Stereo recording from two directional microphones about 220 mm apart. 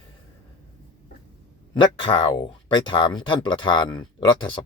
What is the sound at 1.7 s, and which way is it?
Speech, 20° left (ahead or behind).